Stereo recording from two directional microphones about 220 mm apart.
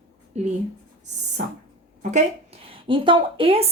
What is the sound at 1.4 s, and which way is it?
A woman's voice, 35° right (ahead or behind).